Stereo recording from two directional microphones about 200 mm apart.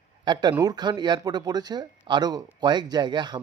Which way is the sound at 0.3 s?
20° right (ahead or behind).